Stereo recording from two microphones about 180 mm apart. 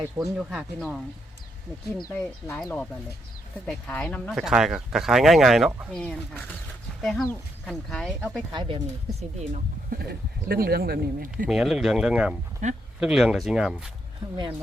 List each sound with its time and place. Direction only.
0.3 s speech: 5° right (ahead or behind)
2.0 s speech: 15° left (ahead or behind)
3.7 s speech: 5° left (ahead or behind)
8.5 s speech: 25° right (ahead or behind)
9.5 s speech: 55° right (ahead or behind)
11.4 s speech: centre (ahead or behind)
12.6 s speech: 40° right (ahead or behind)
13.0 s speech: 5° right (ahead or behind)